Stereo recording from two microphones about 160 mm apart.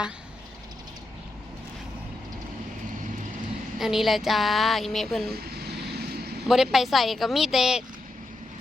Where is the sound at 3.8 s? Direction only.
Centre (ahead or behind).